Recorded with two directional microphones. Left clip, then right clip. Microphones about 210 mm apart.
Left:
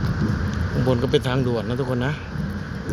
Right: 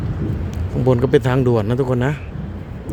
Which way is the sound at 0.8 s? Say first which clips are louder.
Right 6 dB; 30° right (ahead or behind).